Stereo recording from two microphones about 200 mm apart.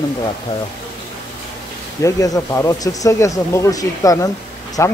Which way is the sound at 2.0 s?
15° left (ahead or behind).